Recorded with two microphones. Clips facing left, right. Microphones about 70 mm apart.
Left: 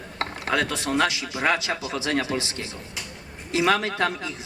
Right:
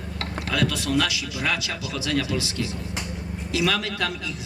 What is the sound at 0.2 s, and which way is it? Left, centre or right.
A man's voice, left.